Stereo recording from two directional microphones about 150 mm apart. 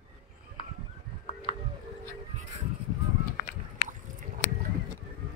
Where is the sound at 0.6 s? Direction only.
40° left (ahead or behind).